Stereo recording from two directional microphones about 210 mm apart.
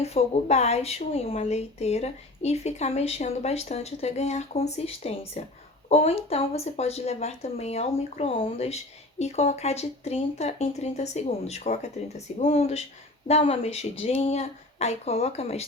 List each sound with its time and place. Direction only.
0.0 s speech: 30° left (ahead or behind)